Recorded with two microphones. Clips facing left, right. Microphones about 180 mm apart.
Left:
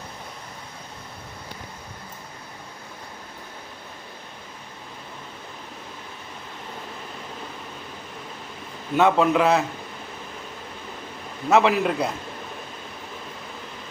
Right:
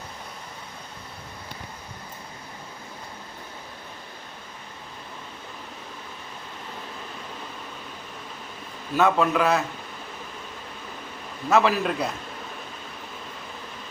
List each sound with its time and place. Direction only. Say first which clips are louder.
8.9 s a man's voice: left 3 dB; 20° left (ahead or behind)
11.4 s a man's voice: left 2 dB; 20° left (ahead or behind)